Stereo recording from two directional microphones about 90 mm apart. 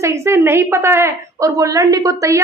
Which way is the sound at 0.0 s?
30° right (ahead or behind).